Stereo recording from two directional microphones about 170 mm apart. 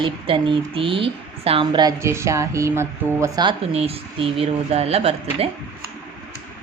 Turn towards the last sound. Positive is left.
turn(degrees=-35)  # may be behind; listen again after turning